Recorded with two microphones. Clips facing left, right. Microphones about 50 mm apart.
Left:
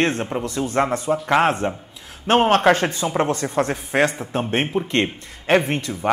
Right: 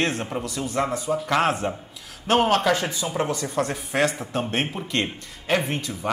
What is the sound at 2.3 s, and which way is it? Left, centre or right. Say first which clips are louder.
Speech: left 4 dB; left.